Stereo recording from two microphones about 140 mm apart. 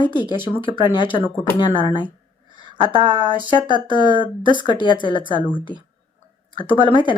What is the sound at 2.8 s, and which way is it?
Speech, 40° right (ahead or behind).